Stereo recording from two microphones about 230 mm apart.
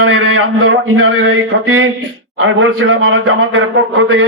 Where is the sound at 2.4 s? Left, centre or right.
Right.